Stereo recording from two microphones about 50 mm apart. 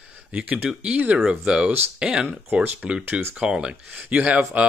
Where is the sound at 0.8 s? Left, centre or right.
Right.